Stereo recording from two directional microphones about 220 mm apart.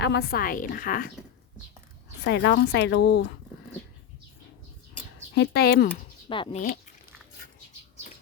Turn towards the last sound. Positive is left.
turn(degrees=25)  # may be behind; listen again after turning